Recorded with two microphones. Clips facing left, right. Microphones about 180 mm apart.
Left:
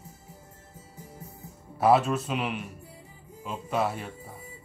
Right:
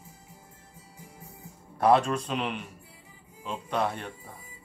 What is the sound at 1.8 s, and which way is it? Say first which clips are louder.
Speech: even; 5° left (ahead or behind).